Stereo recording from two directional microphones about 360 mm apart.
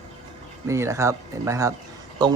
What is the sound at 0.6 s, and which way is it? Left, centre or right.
Speech, centre.